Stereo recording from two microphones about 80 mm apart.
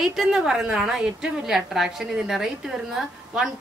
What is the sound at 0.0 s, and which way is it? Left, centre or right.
A woman's voice, centre.